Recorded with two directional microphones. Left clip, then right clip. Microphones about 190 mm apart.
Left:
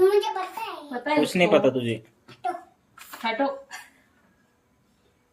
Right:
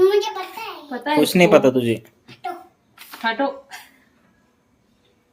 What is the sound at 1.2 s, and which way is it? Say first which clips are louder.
Speech: right 7 dB; 30° right (ahead or behind).